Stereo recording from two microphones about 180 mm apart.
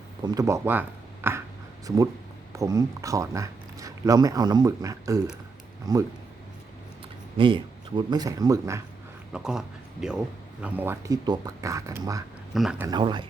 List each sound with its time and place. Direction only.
0.2 s speech: 20° right (ahead or behind)
2.5 s speech: 15° right (ahead or behind)
7.3 s speech: 25° right (ahead or behind)
9.3 s speech: 5° right (ahead or behind); by 12.2 s 20° right (ahead or behind)
12.5 s speech: centre (ahead or behind)
12.9 s speech: 25° right (ahead or behind)